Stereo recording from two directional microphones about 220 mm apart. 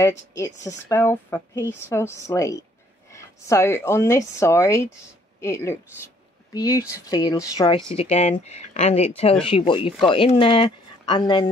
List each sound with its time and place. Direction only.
0.4 s a woman's voice: 15° left (ahead or behind)